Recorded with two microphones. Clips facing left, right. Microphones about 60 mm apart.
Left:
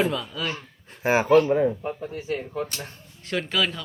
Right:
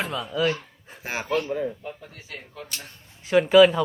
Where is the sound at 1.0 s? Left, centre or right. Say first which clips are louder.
Left 10 dB; left.